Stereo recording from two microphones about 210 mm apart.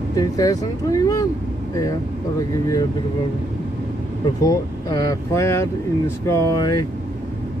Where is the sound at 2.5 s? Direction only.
15° left (ahead or behind).